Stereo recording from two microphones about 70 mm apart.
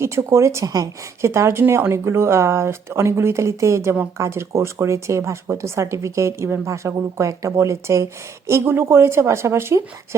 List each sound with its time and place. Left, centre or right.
0.0 s speech: right
0.6 s speech: right
1.2 s speech: right